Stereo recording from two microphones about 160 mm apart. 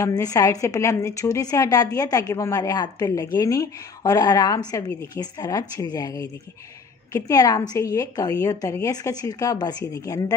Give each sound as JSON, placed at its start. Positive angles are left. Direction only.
{"t": 0.0, "sound": "a woman's voice", "side_deg": 20}